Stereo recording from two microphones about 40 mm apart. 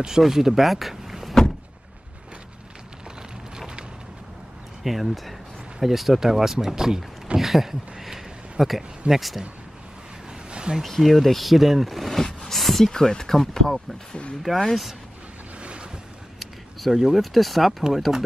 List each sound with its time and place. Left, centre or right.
0.2 s speech: centre
3.5 s a sound: centre
4.8 s speech: centre
7.3 s a sound: centre
9.1 s speech: centre
10.5 s a sound: right
10.8 s speech: centre
12.9 s speech: centre
15.6 s boat: right
16.9 s speech: centre
17.2 s speech: centre